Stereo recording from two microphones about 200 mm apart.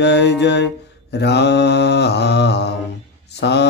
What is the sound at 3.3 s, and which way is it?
Speech, 55° left (ahead or behind).